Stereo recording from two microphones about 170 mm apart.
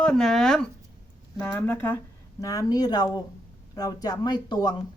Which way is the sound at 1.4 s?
15° left (ahead or behind).